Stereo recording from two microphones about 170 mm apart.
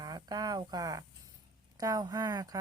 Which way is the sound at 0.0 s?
25° right (ahead or behind).